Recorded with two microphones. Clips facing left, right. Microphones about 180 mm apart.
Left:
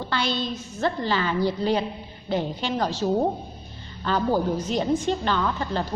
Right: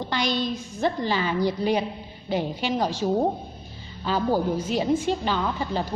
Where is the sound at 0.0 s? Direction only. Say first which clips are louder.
Right 1 dB; 15° right (ahead or behind).